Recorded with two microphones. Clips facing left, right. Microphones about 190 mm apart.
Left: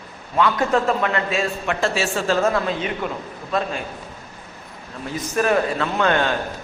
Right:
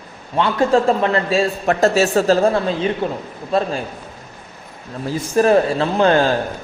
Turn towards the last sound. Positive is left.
turn(degrees=-35)  # may be behind; listen again after turning